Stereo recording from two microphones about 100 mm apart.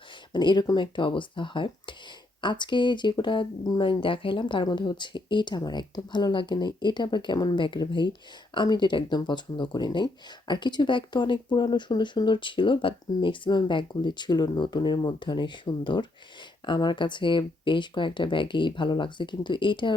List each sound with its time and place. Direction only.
0.3 s speech: 45° left (ahead or behind)